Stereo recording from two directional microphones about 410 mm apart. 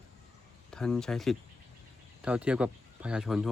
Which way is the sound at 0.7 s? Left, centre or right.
Centre.